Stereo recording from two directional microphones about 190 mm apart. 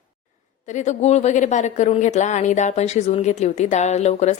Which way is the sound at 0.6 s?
40° left (ahead or behind).